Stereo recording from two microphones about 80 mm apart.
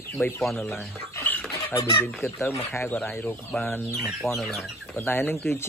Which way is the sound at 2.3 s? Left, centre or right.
Left.